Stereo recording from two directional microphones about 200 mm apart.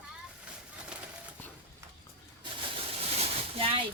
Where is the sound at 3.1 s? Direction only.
30° right (ahead or behind).